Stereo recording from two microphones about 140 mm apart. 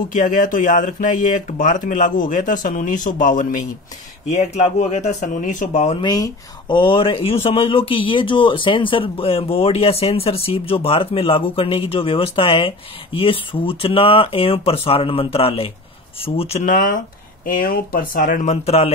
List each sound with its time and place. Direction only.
0.1 s a man's voice: 70° left (ahead or behind)
4.3 s speech: 50° left (ahead or behind)
5.9 s speech: 30° left (ahead or behind); by 16.6 s 45° left (ahead or behind)
16.6 s a man's voice: 75° left (ahead or behind)
17.6 s a man's voice: 90° left; by 18.9 s 50° left (ahead or behind)